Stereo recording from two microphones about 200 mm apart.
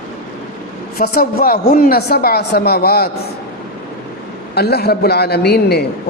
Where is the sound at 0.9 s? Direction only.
50° left (ahead or behind).